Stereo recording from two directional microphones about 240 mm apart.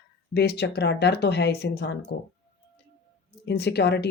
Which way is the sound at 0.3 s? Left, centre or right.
Left.